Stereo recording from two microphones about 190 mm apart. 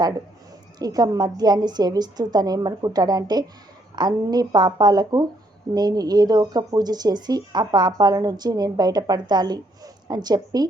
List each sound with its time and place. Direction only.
0.8 s speech: 20° right (ahead or behind)